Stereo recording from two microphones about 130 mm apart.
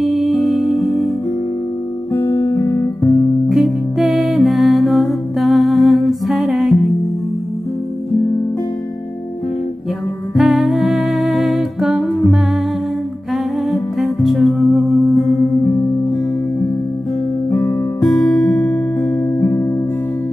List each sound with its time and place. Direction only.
0.0 s music: centre (ahead or behind)
2.1 s guitar: 15° left (ahead or behind)
3.4 s music: centre (ahead or behind)
10.3 s music: centre (ahead or behind)
17.5 s guitar: 15° left (ahead or behind)
18.0 s music: 5° left (ahead or behind)
18.9 s music: 20° left (ahead or behind)